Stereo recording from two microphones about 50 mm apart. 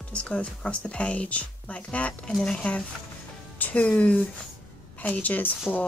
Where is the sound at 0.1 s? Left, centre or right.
Left.